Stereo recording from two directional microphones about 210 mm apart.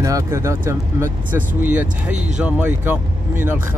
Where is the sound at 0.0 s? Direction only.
15° right (ahead or behind).